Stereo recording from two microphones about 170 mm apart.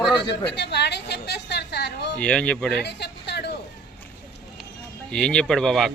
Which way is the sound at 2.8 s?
80° left.